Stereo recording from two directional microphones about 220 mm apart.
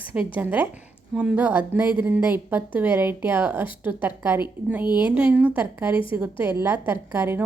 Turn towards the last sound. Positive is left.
turn(degrees=-10)  # may be behind; listen again after turning